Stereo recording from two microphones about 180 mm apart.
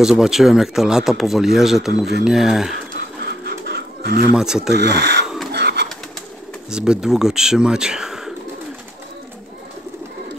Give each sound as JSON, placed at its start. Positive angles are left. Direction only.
{"t": 0.0, "sound": "speech", "side_deg": -5}
{"t": 3.4, "sound": "chicken", "side_deg": -65}
{"t": 4.4, "sound": "speech", "side_deg": -5}
{"t": 4.7, "sound": "speech", "side_deg": -65}
{"t": 5.5, "sound": "bird", "side_deg": -65}
{"t": 6.7, "sound": "speech", "side_deg": -5}